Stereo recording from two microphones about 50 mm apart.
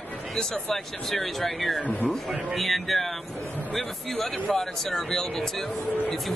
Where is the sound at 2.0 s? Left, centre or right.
Centre.